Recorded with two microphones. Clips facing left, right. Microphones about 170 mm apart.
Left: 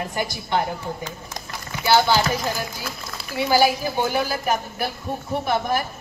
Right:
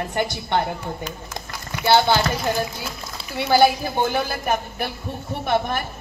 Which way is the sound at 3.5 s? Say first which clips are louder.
Right 3 dB; 55° right (ahead or behind).